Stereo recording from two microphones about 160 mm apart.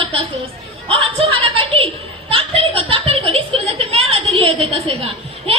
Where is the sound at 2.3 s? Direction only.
35° right (ahead or behind).